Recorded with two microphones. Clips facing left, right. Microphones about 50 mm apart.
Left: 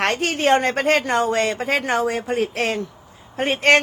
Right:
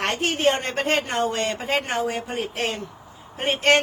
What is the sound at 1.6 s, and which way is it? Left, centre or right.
Speech, left.